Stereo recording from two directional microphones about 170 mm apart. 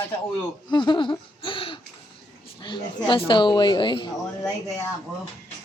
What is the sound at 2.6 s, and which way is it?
Speech, 25° left (ahead or behind).